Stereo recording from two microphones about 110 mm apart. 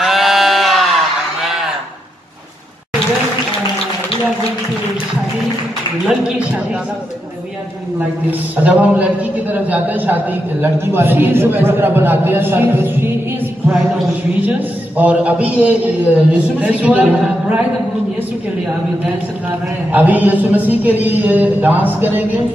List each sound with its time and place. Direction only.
0.0 s sheep: 5° right (ahead or behind)
1.4 s a sound: 5° right (ahead or behind)
6.0 s a man's voice: 10° right (ahead or behind)
8.3 s a man's voice: 15° right (ahead or behind)
19.9 s a man's voice: 15° right (ahead or behind)